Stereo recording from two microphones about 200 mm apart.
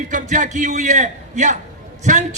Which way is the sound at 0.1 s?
40° right (ahead or behind).